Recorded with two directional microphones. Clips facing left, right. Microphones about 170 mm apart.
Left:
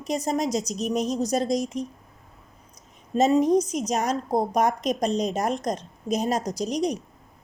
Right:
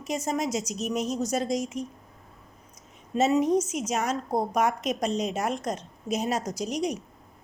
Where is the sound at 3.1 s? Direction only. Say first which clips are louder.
Left 3 dB; 35° left (ahead or behind).